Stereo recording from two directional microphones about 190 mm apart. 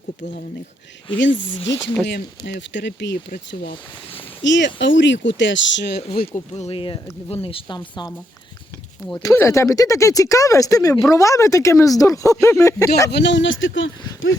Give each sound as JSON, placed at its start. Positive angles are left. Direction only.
{"t": 1.2, "sound": "speech", "side_deg": 75}
{"t": 2.0, "sound": "speech", "side_deg": 65}
{"t": 6.3, "sound": "speech", "side_deg": 35}
{"t": 9.0, "sound": "speech", "side_deg": 10}
{"t": 13.1, "sound": "speech", "side_deg": 65}